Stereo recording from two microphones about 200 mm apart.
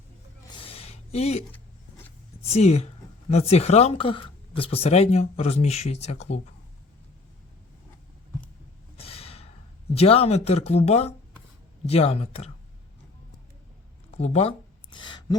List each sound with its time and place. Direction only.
0.5 s a sound: 30° left (ahead or behind)
2.4 s speech: 30° left (ahead or behind)
9.0 s snort: 30° left (ahead or behind)
9.9 s speech: 30° left (ahead or behind)
14.2 s speech: 35° left (ahead or behind)